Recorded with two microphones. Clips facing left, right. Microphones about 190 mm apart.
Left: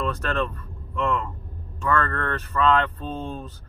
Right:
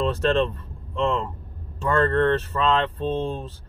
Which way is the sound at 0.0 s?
25° right (ahead or behind).